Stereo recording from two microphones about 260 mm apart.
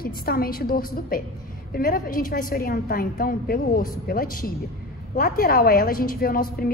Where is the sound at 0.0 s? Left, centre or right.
Left.